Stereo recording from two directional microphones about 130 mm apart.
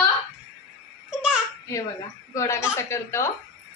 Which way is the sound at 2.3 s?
25° left (ahead or behind).